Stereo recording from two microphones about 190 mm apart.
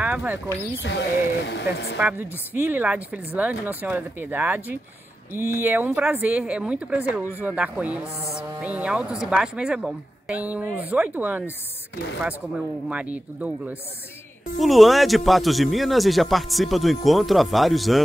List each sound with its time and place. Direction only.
0.0 s speech: 10° right (ahead or behind)
0.8 s speech: 65° left (ahead or behind)
2.0 s speech: 10° right (ahead or behind)